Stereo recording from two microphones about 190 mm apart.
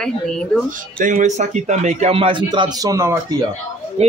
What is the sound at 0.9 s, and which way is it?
Speech, 45° right (ahead or behind).